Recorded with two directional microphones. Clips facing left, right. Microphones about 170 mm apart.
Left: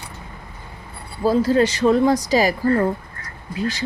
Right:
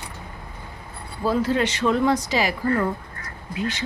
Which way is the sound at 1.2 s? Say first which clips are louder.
Left 5 dB; 35° left (ahead or behind).